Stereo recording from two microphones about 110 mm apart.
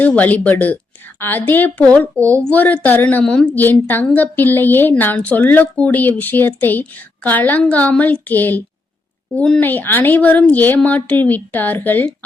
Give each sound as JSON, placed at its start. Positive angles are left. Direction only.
{"t": 0.2, "sound": "a woman's voice", "side_deg": 15}